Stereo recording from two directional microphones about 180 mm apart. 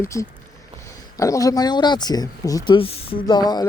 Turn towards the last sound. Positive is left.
turn(degrees=25)  # may be behind; listen again after turning